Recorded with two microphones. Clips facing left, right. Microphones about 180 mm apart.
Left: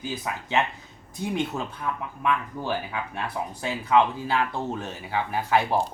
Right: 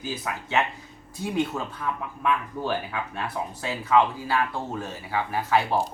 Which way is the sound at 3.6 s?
20° left (ahead or behind).